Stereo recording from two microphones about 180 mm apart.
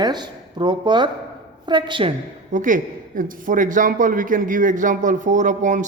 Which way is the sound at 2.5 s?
45° right (ahead or behind).